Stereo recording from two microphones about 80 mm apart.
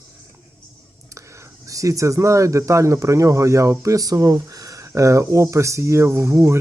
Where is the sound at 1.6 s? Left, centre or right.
Right.